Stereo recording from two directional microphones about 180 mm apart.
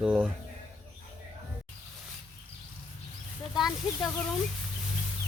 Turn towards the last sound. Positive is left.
turn(degrees=0)  # may be behind; listen again after turning